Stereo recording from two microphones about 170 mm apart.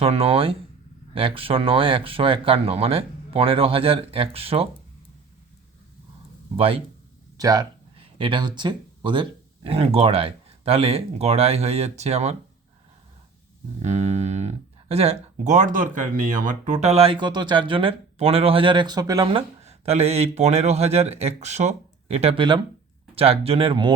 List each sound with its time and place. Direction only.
0.0 s speech: 35° right (ahead or behind)
6.6 s speech: 35° right (ahead or behind)
7.3 s speech: 20° right (ahead or behind); by 12.4 s 40° right (ahead or behind)
13.8 s speech: 40° right (ahead or behind)